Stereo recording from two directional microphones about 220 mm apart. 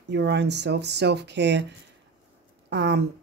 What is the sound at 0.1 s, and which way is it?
Speech, 50° right (ahead or behind).